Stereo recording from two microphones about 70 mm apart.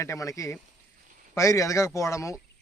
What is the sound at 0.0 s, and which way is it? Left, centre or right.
Speech, left.